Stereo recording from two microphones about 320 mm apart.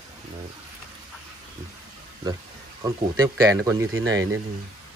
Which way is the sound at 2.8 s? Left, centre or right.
Centre.